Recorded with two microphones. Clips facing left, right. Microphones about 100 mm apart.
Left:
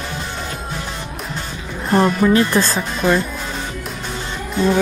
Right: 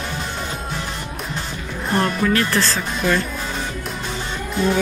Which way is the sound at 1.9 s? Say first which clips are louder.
Left 5 dB; 15° left (ahead or behind).